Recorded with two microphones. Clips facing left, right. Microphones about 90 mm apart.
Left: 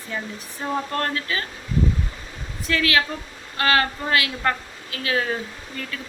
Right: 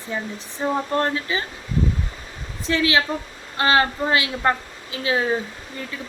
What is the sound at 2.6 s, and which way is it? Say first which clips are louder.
A woman's voice: right 2 dB; 25° right (ahead or behind).